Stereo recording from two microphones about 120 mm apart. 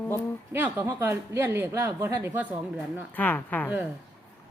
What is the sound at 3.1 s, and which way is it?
Speech, 15° left (ahead or behind).